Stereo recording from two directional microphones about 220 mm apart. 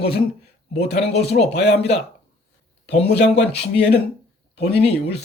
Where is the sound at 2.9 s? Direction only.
50° left (ahead or behind).